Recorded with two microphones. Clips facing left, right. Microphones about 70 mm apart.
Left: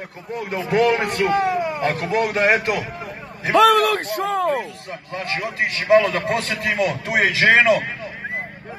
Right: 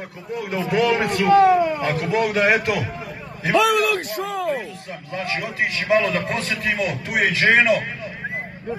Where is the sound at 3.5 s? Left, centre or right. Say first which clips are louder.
Left 4 dB; left.